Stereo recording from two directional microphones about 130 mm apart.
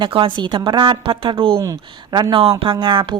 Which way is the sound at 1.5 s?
30° right (ahead or behind).